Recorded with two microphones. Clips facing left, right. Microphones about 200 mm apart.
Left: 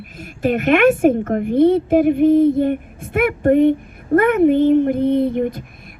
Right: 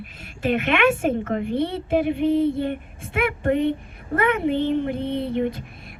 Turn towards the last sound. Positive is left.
turn(degrees=45)  # may be behind; listen again after turning